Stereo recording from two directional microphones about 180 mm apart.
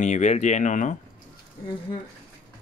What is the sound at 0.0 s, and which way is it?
Speech, 40° left (ahead or behind).